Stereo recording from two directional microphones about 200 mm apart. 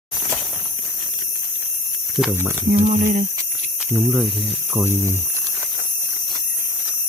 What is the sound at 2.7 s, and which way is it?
Speech, 35° right (ahead or behind).